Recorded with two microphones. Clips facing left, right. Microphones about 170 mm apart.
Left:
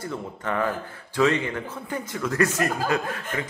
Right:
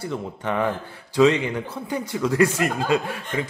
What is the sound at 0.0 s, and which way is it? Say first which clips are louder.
A man's voice: right 3 dB; 15° right (ahead or behind).